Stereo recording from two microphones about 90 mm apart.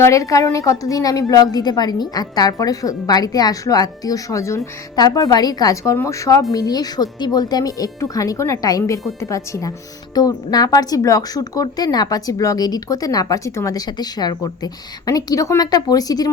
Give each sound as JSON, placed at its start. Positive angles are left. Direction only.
{"t": 0.0, "sound": "a woman's voice", "side_deg": 35}
{"t": 4.9, "sound": "a woman's voice", "side_deg": 45}